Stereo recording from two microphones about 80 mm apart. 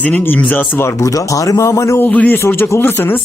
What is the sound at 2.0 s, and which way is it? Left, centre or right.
Speech, left.